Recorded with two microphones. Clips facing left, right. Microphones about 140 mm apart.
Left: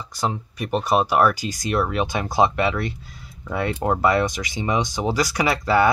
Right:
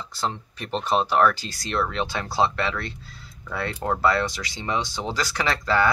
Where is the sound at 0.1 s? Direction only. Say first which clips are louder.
Left 4 dB; 10° left (ahead or behind).